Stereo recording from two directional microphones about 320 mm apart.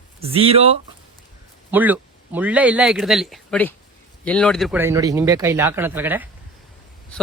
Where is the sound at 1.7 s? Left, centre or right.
Centre.